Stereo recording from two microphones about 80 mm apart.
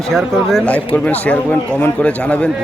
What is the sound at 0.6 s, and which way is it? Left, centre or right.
Speech, centre.